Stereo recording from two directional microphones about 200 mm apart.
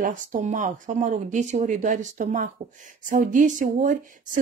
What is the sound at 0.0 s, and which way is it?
Speech, 40° right (ahead or behind).